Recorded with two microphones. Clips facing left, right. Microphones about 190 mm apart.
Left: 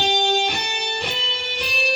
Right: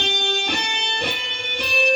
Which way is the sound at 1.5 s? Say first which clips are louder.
Right 5 dB; 55° right (ahead or behind).